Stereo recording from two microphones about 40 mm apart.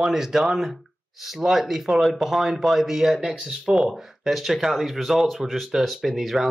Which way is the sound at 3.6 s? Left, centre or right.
Centre.